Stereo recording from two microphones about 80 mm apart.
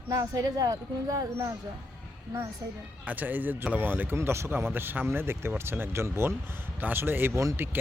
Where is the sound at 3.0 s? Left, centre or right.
Centre.